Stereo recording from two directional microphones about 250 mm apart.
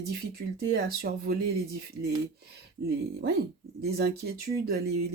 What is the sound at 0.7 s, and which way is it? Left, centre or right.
Speech, right.